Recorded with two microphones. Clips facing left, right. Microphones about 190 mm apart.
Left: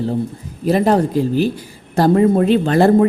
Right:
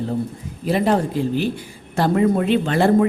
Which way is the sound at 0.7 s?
40° left (ahead or behind).